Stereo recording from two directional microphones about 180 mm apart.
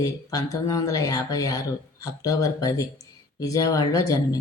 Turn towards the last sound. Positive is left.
turn(degrees=20)  # may be behind; listen again after turning